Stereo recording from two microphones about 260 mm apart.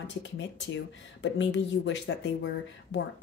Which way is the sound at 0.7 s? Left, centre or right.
Left.